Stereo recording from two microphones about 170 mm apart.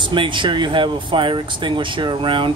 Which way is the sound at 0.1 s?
30° right (ahead or behind).